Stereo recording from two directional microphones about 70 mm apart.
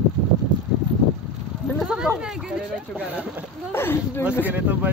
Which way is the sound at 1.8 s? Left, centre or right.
Centre.